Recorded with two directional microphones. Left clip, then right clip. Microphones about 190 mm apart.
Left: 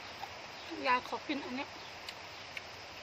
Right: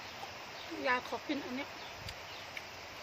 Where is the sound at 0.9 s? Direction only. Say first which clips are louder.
Left 2 dB; 10° left (ahead or behind).